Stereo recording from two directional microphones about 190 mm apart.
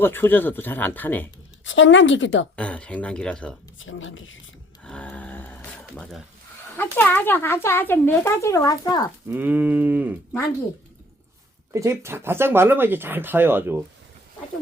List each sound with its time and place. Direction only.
0.0 s speech: 10° left (ahead or behind)
1.6 s a woman's voice: 85° left
2.6 s speech: 5° left (ahead or behind)
3.8 s speech: 90° left
4.8 s a sound: 5° left (ahead or behind)
6.7 s speech: 10° left (ahead or behind)
9.2 s speech: 10° right (ahead or behind)
11.7 s speech: 15° right (ahead or behind)